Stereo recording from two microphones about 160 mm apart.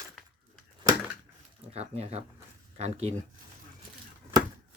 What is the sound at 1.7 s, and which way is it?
Speech, 40° right (ahead or behind).